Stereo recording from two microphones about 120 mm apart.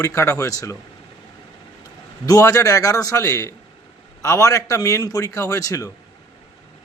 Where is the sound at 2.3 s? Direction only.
25° left (ahead or behind).